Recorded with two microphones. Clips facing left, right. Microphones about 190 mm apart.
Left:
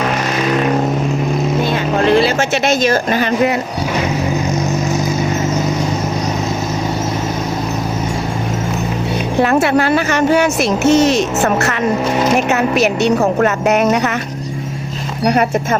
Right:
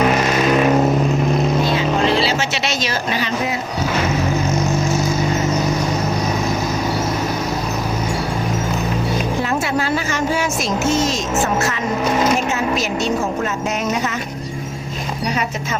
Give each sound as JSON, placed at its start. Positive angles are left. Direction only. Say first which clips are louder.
{"t": 1.7, "sound": "vehicle", "louder": "left 4 dB", "side_deg": 55}
{"t": 9.4, "sound": "speech", "louder": "left 7 dB", "side_deg": 65}